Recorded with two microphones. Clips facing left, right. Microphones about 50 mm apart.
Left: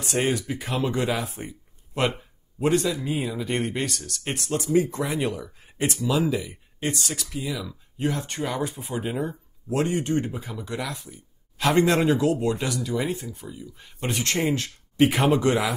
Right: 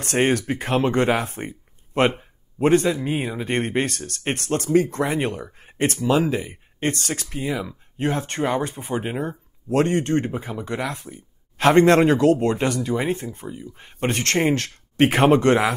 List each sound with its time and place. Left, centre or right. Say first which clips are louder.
0.0 s speech: right 5 dB; right
2.0 s speech: right 5 dB; right